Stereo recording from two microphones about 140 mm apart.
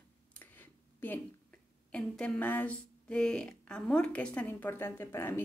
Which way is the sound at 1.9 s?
5° left (ahead or behind).